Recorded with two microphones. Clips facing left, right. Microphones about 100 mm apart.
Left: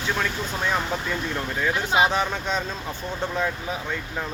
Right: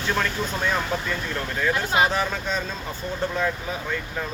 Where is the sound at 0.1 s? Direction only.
5° left (ahead or behind).